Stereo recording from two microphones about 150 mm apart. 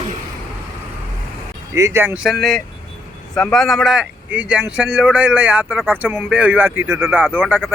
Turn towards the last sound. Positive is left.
turn(degrees=-10)  # may be behind; listen again after turning